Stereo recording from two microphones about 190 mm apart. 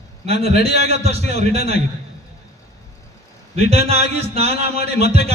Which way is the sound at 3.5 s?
35° right (ahead or behind).